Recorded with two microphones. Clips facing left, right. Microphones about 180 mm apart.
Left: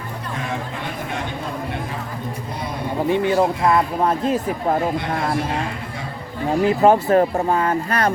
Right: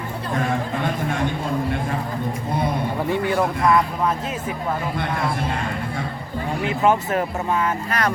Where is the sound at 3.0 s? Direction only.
20° left (ahead or behind); by 4.8 s 40° left (ahead or behind).